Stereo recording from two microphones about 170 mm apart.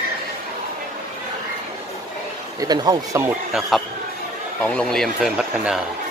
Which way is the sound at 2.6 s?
25° right (ahead or behind).